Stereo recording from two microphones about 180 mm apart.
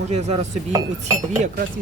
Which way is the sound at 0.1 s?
35° right (ahead or behind).